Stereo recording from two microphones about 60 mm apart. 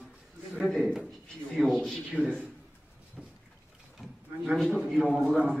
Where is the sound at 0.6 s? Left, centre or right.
Centre.